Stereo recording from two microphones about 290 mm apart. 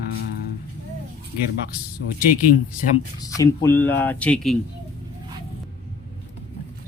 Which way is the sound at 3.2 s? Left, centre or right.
Centre.